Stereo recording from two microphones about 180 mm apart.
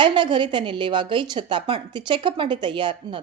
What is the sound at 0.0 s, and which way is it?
Speech, 25° right (ahead or behind).